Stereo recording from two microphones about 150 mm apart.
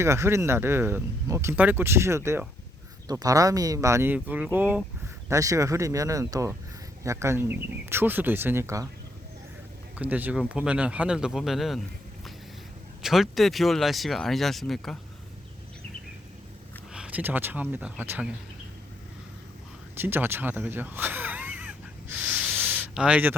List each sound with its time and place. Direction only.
0.0 s speech: 20° right (ahead or behind)
10.0 s speech: 10° right (ahead or behind)
13.0 s speech: centre (ahead or behind)
16.9 s speech: 10° right (ahead or behind)
20.0 s a sound: 15° right (ahead or behind)